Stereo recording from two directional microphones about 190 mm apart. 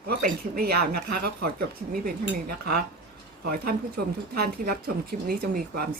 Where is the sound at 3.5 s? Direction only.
50° right (ahead or behind).